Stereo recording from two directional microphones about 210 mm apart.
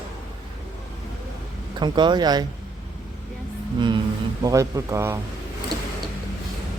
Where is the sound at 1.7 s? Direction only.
20° right (ahead or behind).